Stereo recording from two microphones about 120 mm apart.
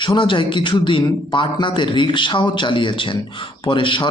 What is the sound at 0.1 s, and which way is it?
A man's voice, 45° left (ahead or behind).